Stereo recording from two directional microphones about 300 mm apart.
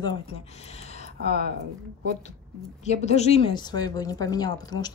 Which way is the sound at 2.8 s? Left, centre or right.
Left.